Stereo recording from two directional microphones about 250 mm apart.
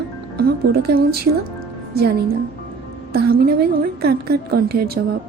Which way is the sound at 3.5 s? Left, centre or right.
Right.